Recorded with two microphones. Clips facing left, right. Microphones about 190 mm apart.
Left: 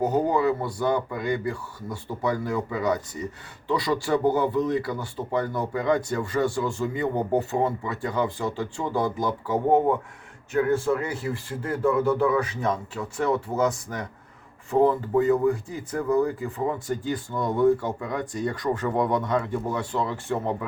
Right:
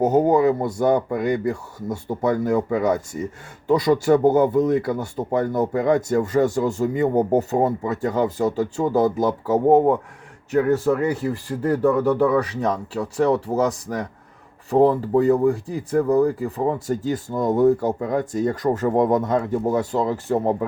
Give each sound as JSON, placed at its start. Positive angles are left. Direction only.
{"t": 0.0, "sound": "speech", "side_deg": -45}